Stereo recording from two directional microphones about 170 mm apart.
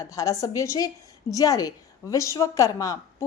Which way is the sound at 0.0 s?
20° left (ahead or behind).